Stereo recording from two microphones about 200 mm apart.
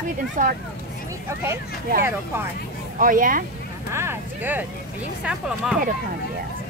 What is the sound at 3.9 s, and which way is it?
Speech, 10° right (ahead or behind).